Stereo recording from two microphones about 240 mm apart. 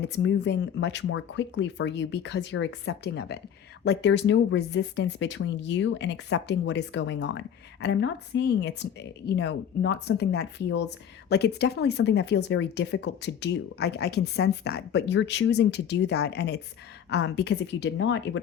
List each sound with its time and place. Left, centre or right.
0.0 s speech: left